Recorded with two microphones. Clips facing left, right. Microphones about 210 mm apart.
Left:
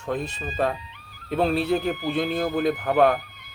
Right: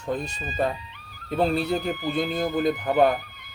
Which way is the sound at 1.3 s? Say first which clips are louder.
Left 1 dB; centre (ahead or behind).